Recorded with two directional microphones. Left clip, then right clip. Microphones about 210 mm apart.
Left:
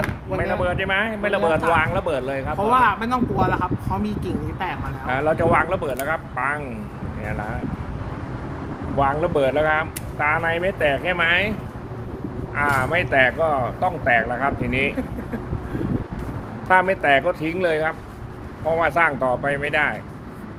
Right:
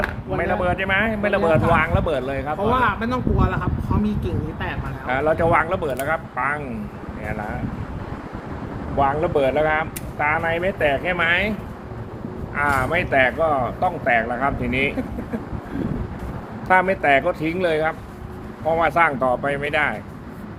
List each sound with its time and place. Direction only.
0.3 s speech: centre (ahead or behind)
2.7 s speech: 15° left (ahead or behind)
5.0 s speech: centre (ahead or behind)
9.0 s speech: 5° left (ahead or behind)
12.5 s speech: centre (ahead or behind)
16.6 s speech: 5° right (ahead or behind)